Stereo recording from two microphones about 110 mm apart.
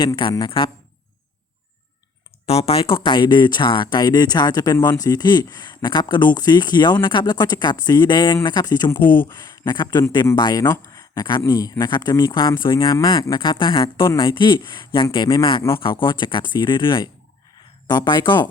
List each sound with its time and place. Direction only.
0.0 s speech: 50° left (ahead or behind)
2.5 s speech: 65° left (ahead or behind); by 10.6 s 40° left (ahead or behind)
10.6 s speech: 25° left (ahead or behind)
11.1 s speech: 40° left (ahead or behind)
15.8 s speech: 50° left (ahead or behind)